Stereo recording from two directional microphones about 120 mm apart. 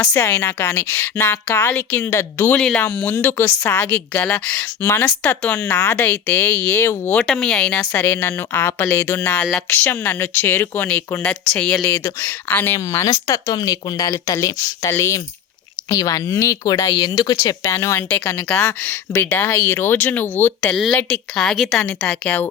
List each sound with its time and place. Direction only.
0.0 s speech: 20° left (ahead or behind)
7.3 s speech: 5° left (ahead or behind); by 17.3 s 35° left (ahead or behind)
17.4 s speech: 25° left (ahead or behind)